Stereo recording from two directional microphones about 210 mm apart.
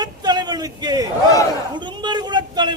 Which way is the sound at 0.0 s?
20° right (ahead or behind).